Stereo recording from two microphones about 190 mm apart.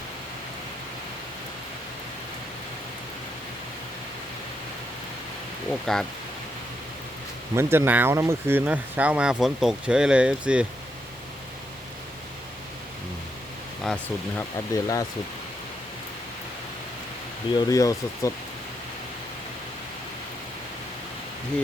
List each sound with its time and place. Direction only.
5.8 s speech: centre (ahead or behind)
7.5 s speech: 15° right (ahead or behind)
13.8 s speech: 10° left (ahead or behind)
17.6 s speech: 20° left (ahead or behind)